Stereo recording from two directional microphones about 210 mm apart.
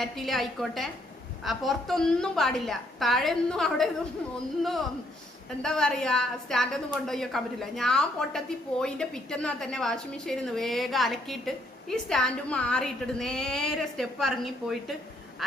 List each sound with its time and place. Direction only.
0.0 s a woman's voice: centre (ahead or behind)